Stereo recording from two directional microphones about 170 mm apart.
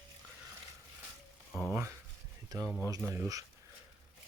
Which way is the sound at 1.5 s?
20° right (ahead or behind).